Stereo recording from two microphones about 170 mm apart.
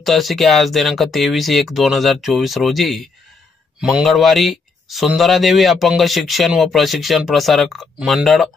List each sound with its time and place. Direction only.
0.0 s speech: centre (ahead or behind)